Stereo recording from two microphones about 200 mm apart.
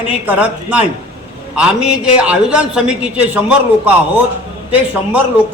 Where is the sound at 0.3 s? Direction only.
5° right (ahead or behind).